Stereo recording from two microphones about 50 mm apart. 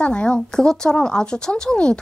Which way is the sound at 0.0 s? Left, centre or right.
Centre.